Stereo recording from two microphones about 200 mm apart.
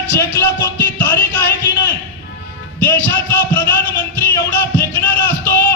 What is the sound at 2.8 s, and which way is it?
Speech, 10° left (ahead or behind).